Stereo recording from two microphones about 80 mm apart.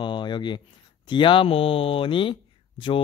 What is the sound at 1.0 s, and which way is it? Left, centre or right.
Speech, left.